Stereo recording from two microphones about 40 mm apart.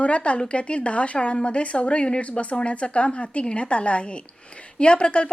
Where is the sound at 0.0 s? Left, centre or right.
Left.